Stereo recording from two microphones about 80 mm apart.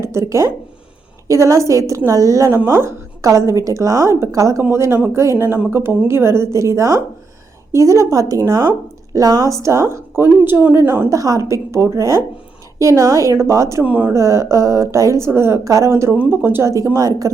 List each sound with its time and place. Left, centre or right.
0.0 s a woman's voice: right
10.2 s speech: right
11.1 s a woman's voice: right
13.8 s speech: right
14.1 s a woman's voice: right
16.7 s a woman's voice: right